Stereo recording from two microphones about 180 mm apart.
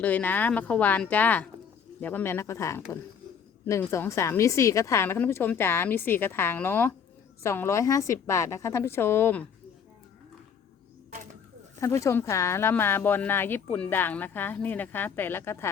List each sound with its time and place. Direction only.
0.0 s speech: 10° left (ahead or behind)
11.8 s speech: 15° left (ahead or behind)